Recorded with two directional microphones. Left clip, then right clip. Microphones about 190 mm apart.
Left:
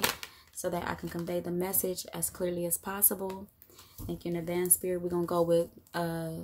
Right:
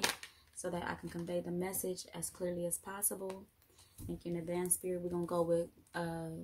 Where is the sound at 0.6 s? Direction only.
35° left (ahead or behind).